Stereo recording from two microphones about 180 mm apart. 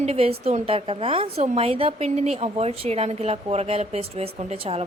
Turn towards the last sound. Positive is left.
turn(degrees=-35)  # may be behind; listen again after turning